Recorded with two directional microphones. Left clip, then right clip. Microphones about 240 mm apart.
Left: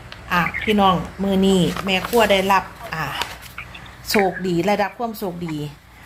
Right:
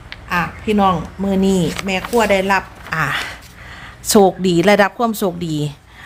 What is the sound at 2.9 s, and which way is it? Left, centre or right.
A woman's voice, right.